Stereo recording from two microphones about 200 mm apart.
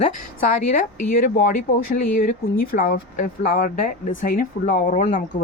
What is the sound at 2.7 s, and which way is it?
Speech, 45° left (ahead or behind).